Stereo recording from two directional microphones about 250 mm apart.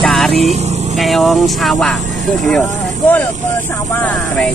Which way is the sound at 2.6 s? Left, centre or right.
Centre.